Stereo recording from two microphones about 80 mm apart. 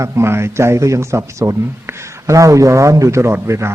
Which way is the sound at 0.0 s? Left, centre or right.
Right.